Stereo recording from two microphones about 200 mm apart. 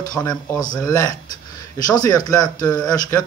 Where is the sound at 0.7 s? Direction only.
15° left (ahead or behind).